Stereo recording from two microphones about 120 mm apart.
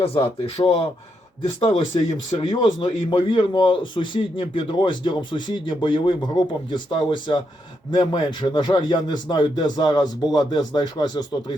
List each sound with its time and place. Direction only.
0.0 s a man's voice: 50° left (ahead or behind)